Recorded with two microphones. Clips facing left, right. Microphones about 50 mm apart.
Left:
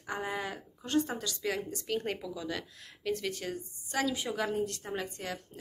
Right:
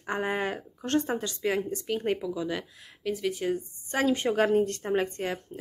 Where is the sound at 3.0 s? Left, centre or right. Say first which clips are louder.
Right 5 dB; centre.